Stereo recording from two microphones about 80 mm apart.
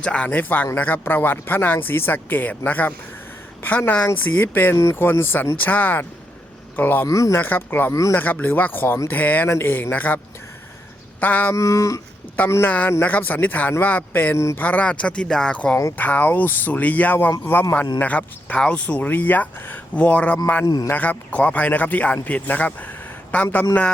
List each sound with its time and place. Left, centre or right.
0.0 s speech: centre
7.1 s a sound: left
7.4 s speech: left
11.2 s speech: left
11.5 s a sound: left
12.6 s speech: left
14.3 s speech: left
14.6 s speech: centre